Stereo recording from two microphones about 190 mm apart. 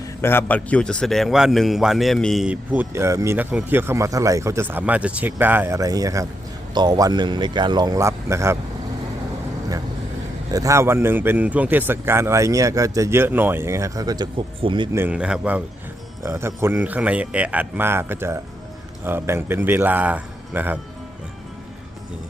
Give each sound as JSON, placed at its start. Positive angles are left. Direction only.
{"t": 0.0, "sound": "a man's voice", "side_deg": 10}
{"t": 10.5, "sound": "a man's voice", "side_deg": -15}
{"t": 14.9, "sound": "a man's voice", "side_deg": -10}